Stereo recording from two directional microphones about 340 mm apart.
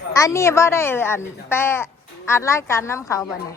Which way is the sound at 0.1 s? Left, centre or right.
Centre.